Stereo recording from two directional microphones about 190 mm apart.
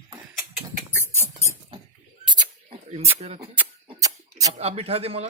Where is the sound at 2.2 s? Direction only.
25° right (ahead or behind).